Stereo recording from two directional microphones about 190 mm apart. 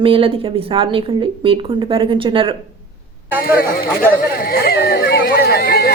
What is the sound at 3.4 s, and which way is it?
Speech, 50° left (ahead or behind).